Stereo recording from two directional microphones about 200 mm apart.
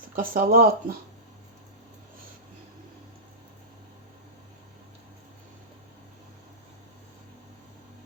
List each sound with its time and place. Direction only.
0.2 s speech: 45° right (ahead or behind)